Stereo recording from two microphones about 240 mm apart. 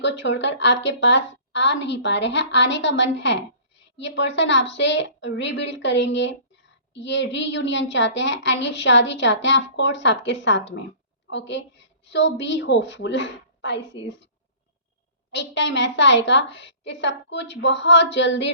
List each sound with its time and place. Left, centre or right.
0.0 s a woman's voice: left
15.3 s a woman's voice: left